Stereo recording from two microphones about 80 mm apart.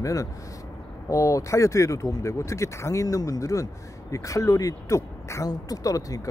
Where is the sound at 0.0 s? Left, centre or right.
Left.